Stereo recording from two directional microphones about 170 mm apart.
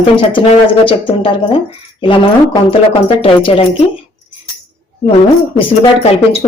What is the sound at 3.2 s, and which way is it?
Speech, 30° left (ahead or behind).